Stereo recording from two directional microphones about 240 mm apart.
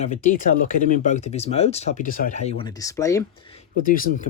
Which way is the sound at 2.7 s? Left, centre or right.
Centre.